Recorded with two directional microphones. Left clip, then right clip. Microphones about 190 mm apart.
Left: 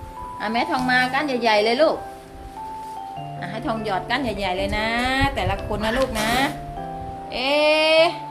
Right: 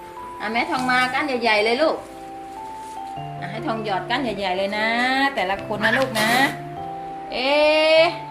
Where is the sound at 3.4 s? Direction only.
10° left (ahead or behind).